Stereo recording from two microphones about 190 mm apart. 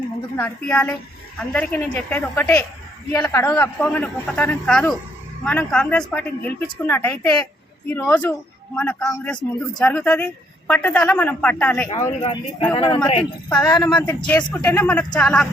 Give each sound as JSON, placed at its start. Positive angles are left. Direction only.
{"t": 0.3, "sound": "speech", "side_deg": 10}
{"t": 12.2, "sound": "speech", "side_deg": 30}
{"t": 14.0, "sound": "speech", "side_deg": 10}